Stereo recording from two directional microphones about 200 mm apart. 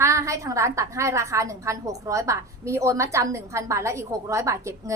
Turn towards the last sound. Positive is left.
turn(degrees=-15)  # may be behind; listen again after turning